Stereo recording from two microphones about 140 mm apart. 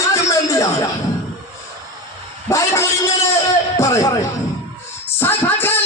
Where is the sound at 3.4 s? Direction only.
20° left (ahead or behind).